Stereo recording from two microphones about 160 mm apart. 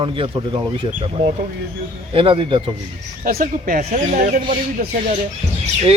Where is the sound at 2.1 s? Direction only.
35° right (ahead or behind).